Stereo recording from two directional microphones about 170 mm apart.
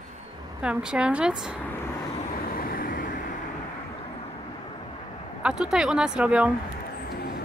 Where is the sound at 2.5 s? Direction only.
60° left (ahead or behind).